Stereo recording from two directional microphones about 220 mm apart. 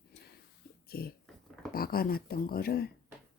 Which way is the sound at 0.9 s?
45° left (ahead or behind).